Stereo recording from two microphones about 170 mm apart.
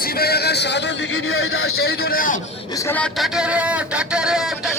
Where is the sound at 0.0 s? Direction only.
65° left (ahead or behind); by 1.1 s 90° left.